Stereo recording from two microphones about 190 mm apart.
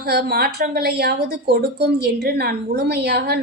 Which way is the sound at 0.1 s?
55° right (ahead or behind).